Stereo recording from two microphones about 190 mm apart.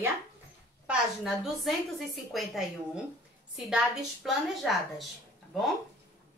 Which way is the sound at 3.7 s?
5° right (ahead or behind).